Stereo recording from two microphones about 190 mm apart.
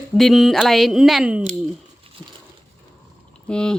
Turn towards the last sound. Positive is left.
turn(degrees=5)  # may be behind; listen again after turning